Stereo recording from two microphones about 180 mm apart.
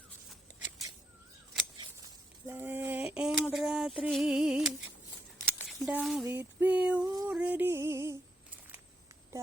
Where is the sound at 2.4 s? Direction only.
15° right (ahead or behind).